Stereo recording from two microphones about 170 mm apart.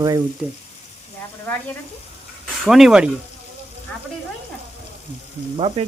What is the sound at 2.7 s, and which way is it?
Speech, centre (ahead or behind).